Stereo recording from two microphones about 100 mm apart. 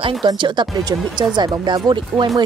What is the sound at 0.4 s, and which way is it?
Speech, 50° right (ahead or behind).